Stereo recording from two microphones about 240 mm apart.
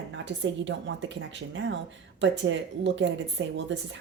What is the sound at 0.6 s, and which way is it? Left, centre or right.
Speech, right.